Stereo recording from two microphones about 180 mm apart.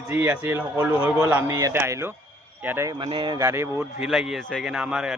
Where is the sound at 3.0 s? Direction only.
25° right (ahead or behind); by 5.1 s 5° right (ahead or behind).